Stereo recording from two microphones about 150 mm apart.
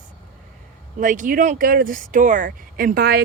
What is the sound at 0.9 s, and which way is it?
Speech, 60° right (ahead or behind).